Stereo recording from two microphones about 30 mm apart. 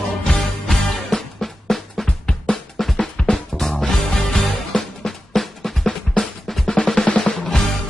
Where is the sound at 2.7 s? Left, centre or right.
Centre.